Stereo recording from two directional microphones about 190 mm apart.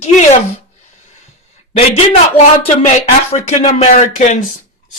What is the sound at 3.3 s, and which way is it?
Speech, 35° left (ahead or behind).